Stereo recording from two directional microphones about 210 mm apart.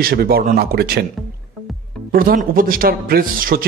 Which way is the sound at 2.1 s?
40° right (ahead or behind).